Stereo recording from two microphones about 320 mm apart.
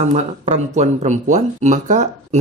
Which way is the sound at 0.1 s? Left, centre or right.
Right.